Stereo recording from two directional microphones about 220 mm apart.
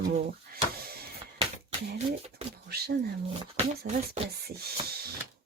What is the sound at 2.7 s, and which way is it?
Speech, 45° right (ahead or behind).